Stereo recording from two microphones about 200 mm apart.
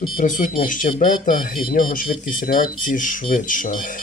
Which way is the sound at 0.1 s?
40° left (ahead or behind).